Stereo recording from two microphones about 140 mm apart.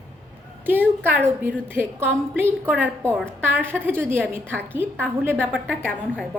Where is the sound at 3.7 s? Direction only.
15° right (ahead or behind).